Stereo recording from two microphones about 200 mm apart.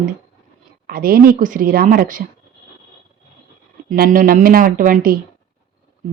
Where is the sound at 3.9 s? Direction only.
45° right (ahead or behind).